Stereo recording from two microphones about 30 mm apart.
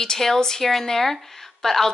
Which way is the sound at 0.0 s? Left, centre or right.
Left.